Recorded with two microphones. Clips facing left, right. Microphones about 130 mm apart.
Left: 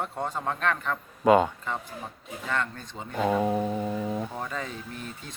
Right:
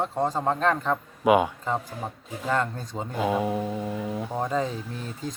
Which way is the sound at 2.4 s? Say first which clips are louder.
Right 5 dB; 35° right (ahead or behind).